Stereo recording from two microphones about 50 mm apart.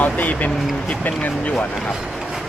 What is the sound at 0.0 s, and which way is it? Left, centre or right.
Speech, left.